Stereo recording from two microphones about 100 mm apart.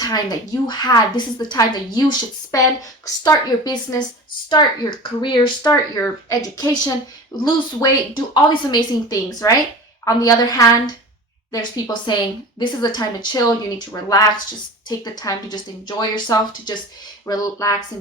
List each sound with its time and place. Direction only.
0.0 s a woman's voice: 40° left (ahead or behind)
4.4 s a woman's voice: 50° left (ahead or behind)
5.7 s a woman's voice: 30° left (ahead or behind)
9.4 s a woman's voice: 30° left (ahead or behind)